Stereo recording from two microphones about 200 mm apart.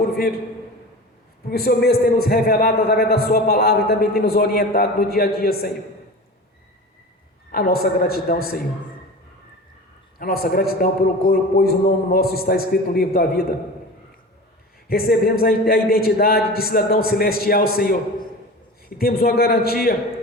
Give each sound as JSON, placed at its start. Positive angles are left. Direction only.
{"t": 1.5, "sound": "a man's voice", "side_deg": 50}
{"t": 7.5, "sound": "a man's voice", "side_deg": 50}
{"t": 10.2, "sound": "a man's voice", "side_deg": 50}
{"t": 14.8, "sound": "a man's voice", "side_deg": 50}